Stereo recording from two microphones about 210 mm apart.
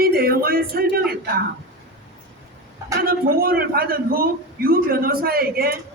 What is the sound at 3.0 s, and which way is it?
A man's voice, 45° right (ahead or behind).